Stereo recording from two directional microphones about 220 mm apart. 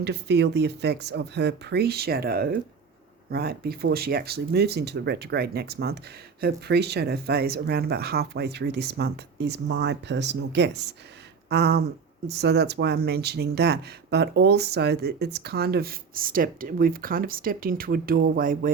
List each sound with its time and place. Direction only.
0.0 s speech: 50° right (ahead or behind)
11.4 s a sound: 50° right (ahead or behind)
12.3 s speech: 50° right (ahead or behind)